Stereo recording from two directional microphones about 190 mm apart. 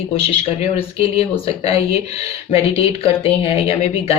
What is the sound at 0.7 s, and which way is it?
Speech, 30° left (ahead or behind).